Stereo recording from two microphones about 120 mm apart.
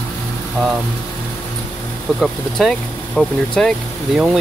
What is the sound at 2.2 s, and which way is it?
Speech, centre (ahead or behind).